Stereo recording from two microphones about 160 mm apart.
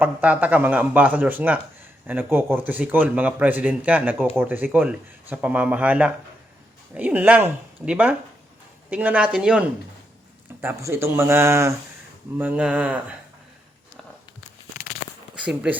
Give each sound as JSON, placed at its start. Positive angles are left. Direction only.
{"t": 0.0, "sound": "speech", "side_deg": -10}
{"t": 15.4, "sound": "speech", "side_deg": -5}